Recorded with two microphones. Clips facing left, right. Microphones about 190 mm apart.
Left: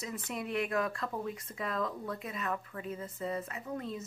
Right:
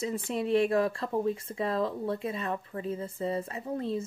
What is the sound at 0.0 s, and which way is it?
Speech, 30° right (ahead or behind).